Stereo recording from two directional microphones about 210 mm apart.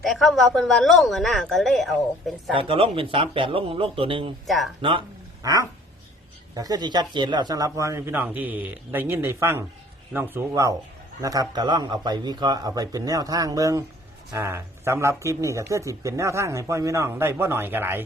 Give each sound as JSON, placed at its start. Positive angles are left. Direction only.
{"t": 0.0, "sound": "a woman's voice", "side_deg": 0}
{"t": 2.5, "sound": "speech", "side_deg": -25}
{"t": 4.4, "sound": "a woman's voice", "side_deg": 0}
{"t": 4.8, "sound": "speech", "side_deg": -25}